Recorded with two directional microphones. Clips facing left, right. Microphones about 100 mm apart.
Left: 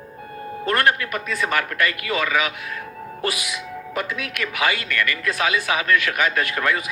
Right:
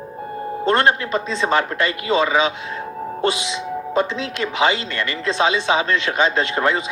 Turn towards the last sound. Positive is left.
turn(degrees=-25)  # may be behind; listen again after turning